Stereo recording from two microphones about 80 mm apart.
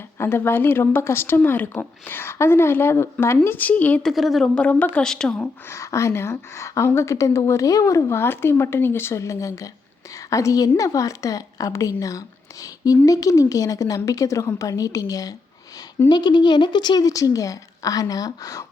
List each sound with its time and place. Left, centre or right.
0.2 s a woman's voice: left
4.0 s a woman's voice: centre
4.5 s a woman's voice: centre
5.0 s a woman's voice: centre
5.6 s a woman's voice: left
16.0 s a woman's voice: left